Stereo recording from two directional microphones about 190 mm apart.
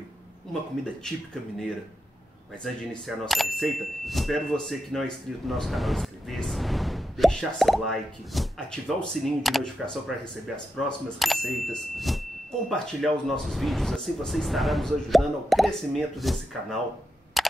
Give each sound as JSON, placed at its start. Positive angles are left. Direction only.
{"t": 1.0, "sound": "speech", "side_deg": 5}
{"t": 2.6, "sound": "speech", "side_deg": 0}
{"t": 11.1, "sound": "speech", "side_deg": 0}
{"t": 17.4, "sound": "a sound", "side_deg": 0}